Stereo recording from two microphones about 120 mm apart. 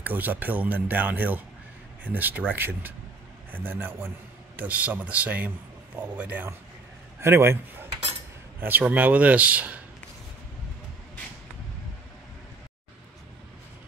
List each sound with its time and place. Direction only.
0.0 s a man's voice: 15° right (ahead or behind)
8.5 s speech: 15° right (ahead or behind)